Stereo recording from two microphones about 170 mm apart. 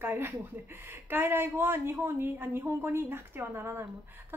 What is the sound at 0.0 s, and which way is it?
Speech, 10° right (ahead or behind).